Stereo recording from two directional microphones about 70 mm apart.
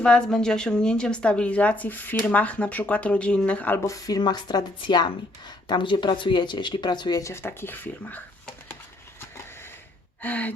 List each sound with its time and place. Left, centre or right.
0.0 s speech: centre
3.8 s speech: left
7.4 s speech: left
10.2 s gasp: left